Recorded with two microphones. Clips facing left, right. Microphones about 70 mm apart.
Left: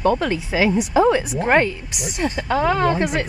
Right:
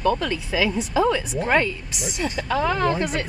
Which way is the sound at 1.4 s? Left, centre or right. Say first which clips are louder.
Left 4 dB; left.